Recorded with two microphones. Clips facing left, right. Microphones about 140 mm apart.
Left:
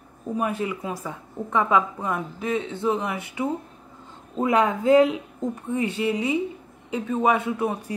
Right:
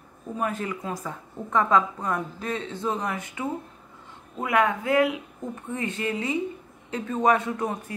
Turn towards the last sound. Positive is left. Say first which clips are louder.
# left 3 dB
turn(degrees=10)  # may be behind; listen again after turning